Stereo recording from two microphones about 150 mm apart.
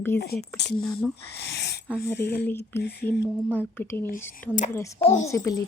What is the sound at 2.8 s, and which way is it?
Speech, 90° left.